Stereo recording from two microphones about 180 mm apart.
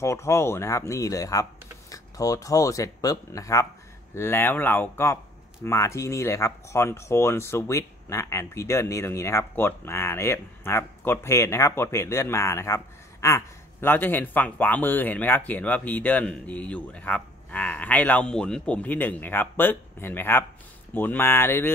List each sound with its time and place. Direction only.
0.0 s speech: 15° left (ahead or behind)